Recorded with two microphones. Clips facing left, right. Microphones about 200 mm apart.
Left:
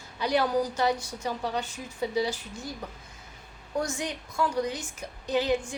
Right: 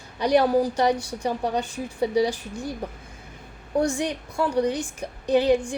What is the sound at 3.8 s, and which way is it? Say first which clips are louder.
A woman's voice: right 7 dB; 30° right (ahead or behind).